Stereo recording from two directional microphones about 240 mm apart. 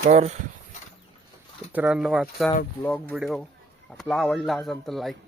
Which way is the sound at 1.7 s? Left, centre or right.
Centre.